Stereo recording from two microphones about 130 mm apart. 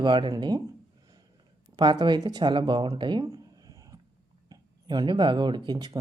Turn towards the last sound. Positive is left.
turn(degrees=-35)  # may be behind; listen again after turning